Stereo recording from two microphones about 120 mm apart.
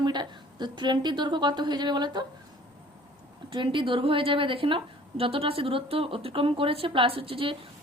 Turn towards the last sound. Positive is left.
turn(degrees=-45)  # may be behind; listen again after turning